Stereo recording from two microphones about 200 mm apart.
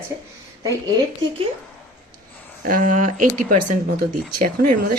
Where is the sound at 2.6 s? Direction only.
40° right (ahead or behind).